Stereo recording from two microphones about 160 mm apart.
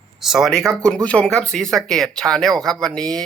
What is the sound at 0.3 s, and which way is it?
Speech, 5° right (ahead or behind).